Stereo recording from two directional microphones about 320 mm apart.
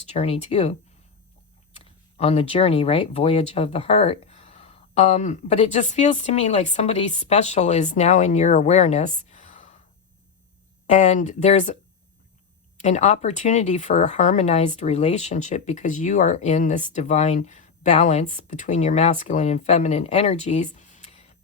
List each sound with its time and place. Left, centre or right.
0.0 s speech: centre
1.8 s speech: centre
10.8 s speech: left